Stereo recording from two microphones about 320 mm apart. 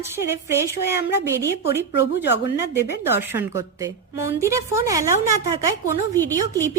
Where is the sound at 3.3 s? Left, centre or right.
Centre.